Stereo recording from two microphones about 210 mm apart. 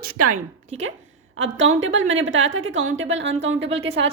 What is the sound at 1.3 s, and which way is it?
A woman's voice, 65° right (ahead or behind).